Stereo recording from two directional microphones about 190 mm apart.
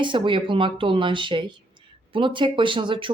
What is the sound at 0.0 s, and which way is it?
Speech, 25° right (ahead or behind).